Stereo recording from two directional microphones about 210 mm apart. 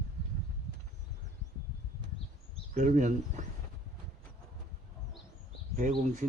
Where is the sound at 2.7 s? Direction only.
35° right (ahead or behind).